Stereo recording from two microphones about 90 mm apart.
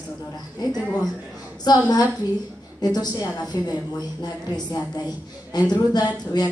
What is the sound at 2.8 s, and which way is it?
A woman's voice, 45° left (ahead or behind).